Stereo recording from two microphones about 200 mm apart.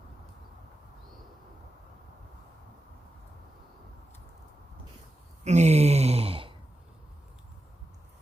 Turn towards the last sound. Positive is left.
turn(degrees=-25)  # may be behind; listen again after turning